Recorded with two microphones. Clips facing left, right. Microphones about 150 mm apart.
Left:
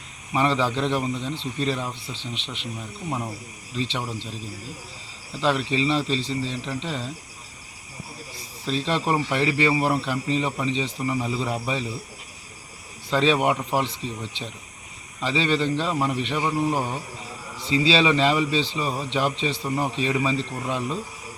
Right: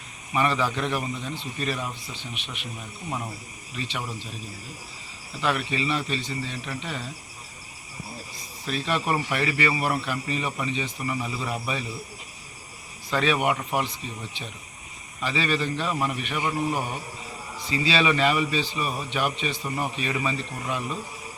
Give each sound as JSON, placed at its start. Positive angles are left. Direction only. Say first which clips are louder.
{"t": 0.3, "sound": "speech", "louder": "left 2 dB", "side_deg": 25}
{"t": 3.8, "sound": "speech", "louder": "left 5 dB", "side_deg": 25}
{"t": 5.4, "sound": "speech", "louder": "left 4 dB", "side_deg": 25}
{"t": 8.6, "sound": "speech", "louder": "left 2 dB", "side_deg": 25}
{"t": 13.1, "sound": "speech", "louder": "left 3 dB", "side_deg": 25}